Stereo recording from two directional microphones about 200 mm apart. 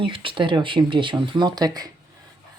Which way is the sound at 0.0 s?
25° right (ahead or behind).